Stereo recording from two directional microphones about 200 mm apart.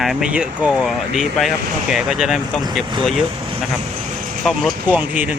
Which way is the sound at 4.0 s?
35° right (ahead or behind).